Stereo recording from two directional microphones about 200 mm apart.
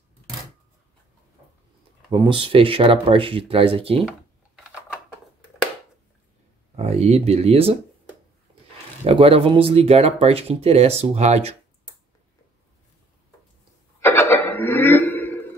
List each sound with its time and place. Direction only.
2.0 s speech: 25° right (ahead or behind)
6.8 s speech: 30° right (ahead or behind)
9.0 s speech: 30° right (ahead or behind)
13.9 s cough: 10° left (ahead or behind)